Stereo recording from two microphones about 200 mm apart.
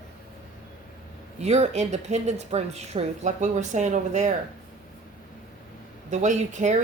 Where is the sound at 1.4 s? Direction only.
35° right (ahead or behind).